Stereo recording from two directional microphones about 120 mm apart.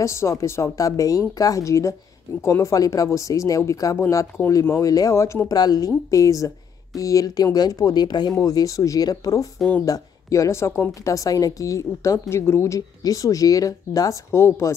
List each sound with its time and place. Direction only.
0.0 s a woman's voice: 25° left (ahead or behind)